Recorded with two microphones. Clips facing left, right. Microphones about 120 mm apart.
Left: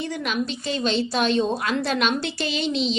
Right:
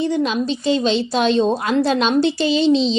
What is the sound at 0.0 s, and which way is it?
A woman's voice, 30° right (ahead or behind).